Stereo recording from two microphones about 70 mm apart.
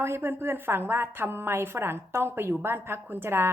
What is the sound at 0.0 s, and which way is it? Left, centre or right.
A woman's voice, right.